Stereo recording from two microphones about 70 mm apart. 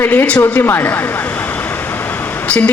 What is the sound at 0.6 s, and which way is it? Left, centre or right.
Speech, left.